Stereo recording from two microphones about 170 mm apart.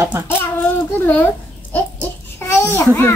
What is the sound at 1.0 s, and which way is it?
A child's voice, 10° left (ahead or behind).